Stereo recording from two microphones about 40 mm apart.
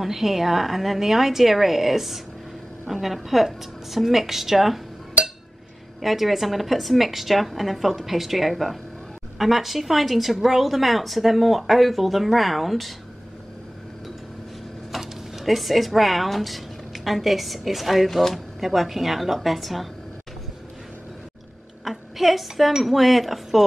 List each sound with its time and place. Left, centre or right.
0.0 s a woman's voice: centre
5.2 s a sound: right
5.9 s a woman's voice: centre
14.9 s speech: centre
21.8 s a woman's voice: centre